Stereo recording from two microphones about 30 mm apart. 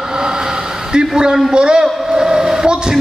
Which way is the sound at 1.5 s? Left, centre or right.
Right.